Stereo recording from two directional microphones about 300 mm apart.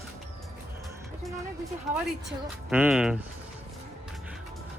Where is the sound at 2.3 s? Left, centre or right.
Centre.